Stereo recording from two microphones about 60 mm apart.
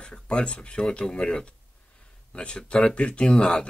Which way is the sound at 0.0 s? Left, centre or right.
Centre.